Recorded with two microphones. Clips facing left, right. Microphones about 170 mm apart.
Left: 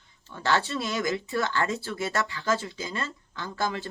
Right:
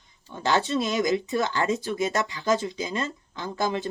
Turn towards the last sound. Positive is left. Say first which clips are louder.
# right 3 dB
turn(degrees=-20)  # may be behind; listen again after turning